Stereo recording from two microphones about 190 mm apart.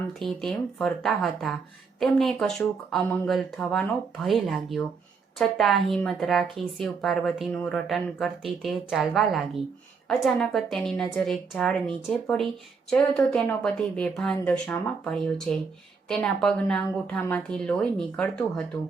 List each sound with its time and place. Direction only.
0.1 s speech: centre (ahead or behind)